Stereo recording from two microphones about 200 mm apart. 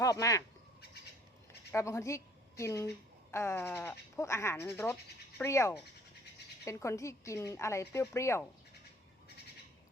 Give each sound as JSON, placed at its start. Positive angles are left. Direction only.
{"t": 0.0, "sound": "speech", "side_deg": 15}
{"t": 1.7, "sound": "a woman's voice", "side_deg": 15}